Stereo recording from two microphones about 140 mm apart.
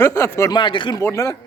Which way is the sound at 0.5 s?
35° left (ahead or behind).